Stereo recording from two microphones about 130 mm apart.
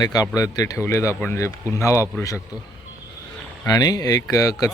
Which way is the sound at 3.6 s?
30° left (ahead or behind).